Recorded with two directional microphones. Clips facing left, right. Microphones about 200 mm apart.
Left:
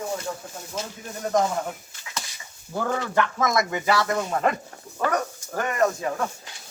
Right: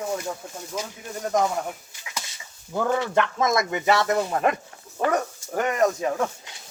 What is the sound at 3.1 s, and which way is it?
Speech, 25° right (ahead or behind).